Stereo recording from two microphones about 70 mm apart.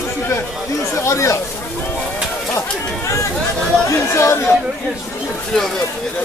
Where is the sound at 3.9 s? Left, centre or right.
Left.